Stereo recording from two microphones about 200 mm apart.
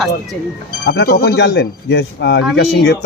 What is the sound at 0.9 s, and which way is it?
Speech, 55° left (ahead or behind).